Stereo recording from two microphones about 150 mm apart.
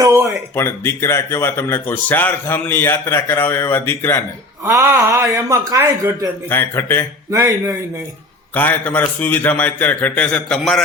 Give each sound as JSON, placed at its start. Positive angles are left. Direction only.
{"t": 0.0, "sound": "a sound", "side_deg": -20}
{"t": 0.5, "sound": "speech", "side_deg": 15}
{"t": 4.6, "sound": "a man's voice", "side_deg": -15}
{"t": 6.5, "sound": "speech", "side_deg": 15}
{"t": 7.3, "sound": "a man's voice", "side_deg": -20}
{"t": 8.5, "sound": "speech", "side_deg": 10}